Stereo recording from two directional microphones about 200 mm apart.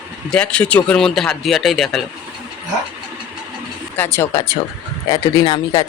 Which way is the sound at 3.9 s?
10° left (ahead or behind).